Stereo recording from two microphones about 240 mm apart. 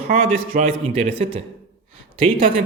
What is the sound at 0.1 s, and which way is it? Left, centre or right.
Speech, right.